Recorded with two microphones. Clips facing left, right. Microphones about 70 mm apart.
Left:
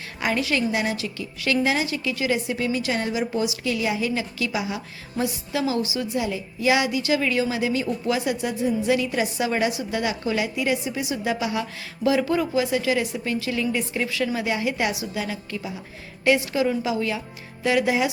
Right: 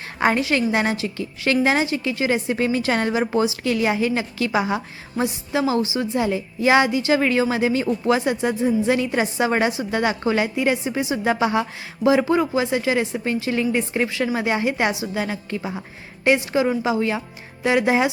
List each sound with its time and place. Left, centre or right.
0.2 s a woman's voice: right
5.1 s a woman's voice: right
12.0 s a woman's voice: right